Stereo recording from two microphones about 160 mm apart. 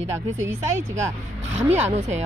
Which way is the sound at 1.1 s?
15° right (ahead or behind).